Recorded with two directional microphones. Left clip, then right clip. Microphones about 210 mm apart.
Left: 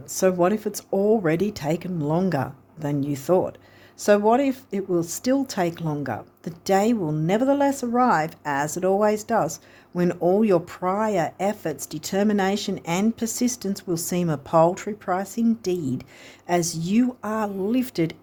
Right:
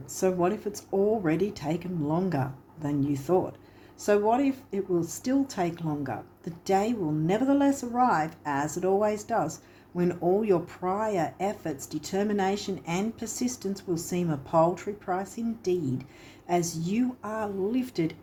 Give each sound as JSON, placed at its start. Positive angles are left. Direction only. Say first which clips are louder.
{"t": 0.1, "sound": "speech", "louder": "left 6 dB", "side_deg": 55}